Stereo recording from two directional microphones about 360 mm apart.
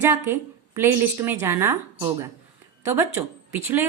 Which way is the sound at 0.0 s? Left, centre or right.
Centre.